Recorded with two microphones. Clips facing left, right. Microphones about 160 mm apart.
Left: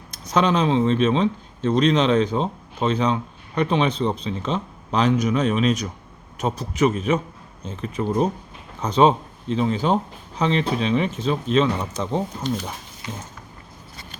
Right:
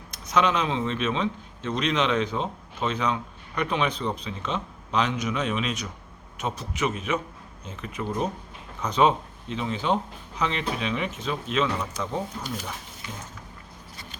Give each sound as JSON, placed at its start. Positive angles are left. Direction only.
{"t": 0.1, "sound": "speech", "side_deg": 35}